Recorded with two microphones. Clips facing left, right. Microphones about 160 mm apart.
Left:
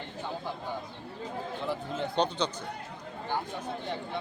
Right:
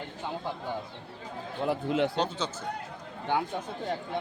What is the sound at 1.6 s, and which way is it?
Speech, 70° right (ahead or behind).